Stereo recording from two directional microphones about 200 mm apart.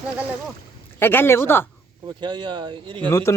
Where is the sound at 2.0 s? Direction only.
20° right (ahead or behind).